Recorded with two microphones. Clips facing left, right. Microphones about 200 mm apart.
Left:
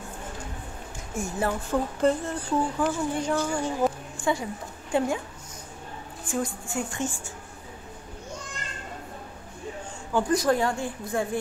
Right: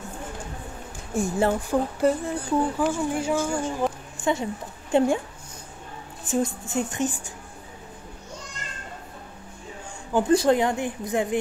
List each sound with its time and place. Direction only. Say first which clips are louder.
1.1 s speech: right 5 dB; 30° right (ahead or behind)
1.7 s a woman's voice: right 2 dB; 10° right (ahead or behind)
4.2 s a woman's voice: right 2 dB; 20° right (ahead or behind)
6.4 s a woman's voice: right 4 dB; 20° right (ahead or behind)
10.1 s a woman's voice: right 4 dB; 25° right (ahead or behind)